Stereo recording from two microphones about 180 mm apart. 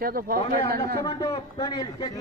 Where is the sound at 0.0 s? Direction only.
55° right (ahead or behind).